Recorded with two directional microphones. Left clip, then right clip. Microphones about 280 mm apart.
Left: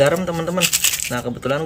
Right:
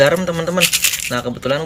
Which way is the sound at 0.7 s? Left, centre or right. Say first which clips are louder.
Right 2 dB; left.